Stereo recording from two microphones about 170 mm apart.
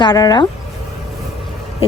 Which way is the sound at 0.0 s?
25° left (ahead or behind).